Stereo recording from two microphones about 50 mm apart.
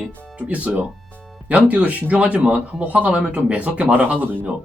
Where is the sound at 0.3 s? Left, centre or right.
Right.